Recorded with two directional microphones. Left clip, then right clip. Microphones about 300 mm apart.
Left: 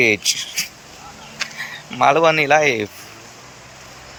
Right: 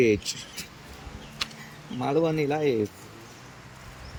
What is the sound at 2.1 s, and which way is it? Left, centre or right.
Speech, left.